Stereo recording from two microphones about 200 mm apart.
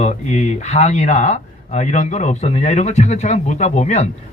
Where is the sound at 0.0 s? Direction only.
35° left (ahead or behind).